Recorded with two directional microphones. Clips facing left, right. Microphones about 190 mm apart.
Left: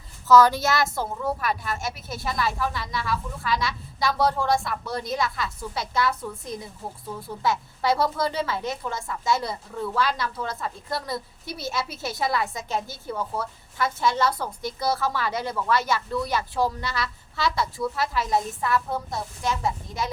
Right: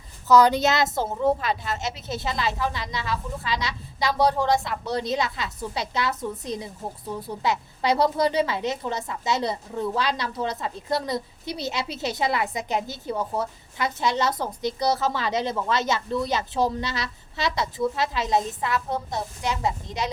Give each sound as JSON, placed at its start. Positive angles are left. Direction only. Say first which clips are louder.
{"t": 0.3, "sound": "a woman's voice", "louder": "even", "side_deg": -15}